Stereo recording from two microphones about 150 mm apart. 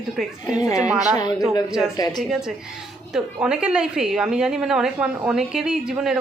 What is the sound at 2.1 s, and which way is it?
A woman's voice, centre (ahead or behind).